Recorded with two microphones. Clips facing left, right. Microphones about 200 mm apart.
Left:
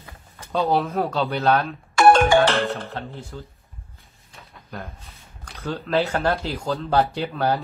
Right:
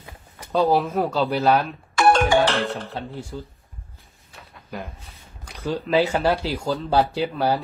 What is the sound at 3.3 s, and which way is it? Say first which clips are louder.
Speech: right 3 dB; 10° right (ahead or behind).